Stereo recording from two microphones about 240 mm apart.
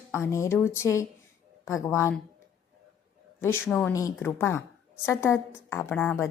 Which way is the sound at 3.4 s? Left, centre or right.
Centre.